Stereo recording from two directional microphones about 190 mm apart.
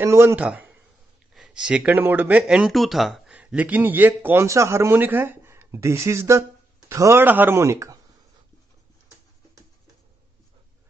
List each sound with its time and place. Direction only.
0.0 s speech: 15° right (ahead or behind)